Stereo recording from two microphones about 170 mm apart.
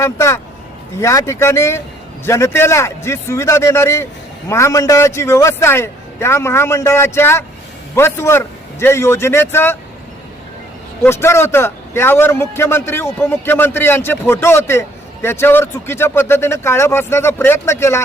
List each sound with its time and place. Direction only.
0.0 s a man's voice: 15° left (ahead or behind)
11.0 s a man's voice: 15° left (ahead or behind)